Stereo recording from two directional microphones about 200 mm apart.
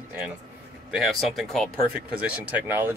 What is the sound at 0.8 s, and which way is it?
Speech, centre (ahead or behind).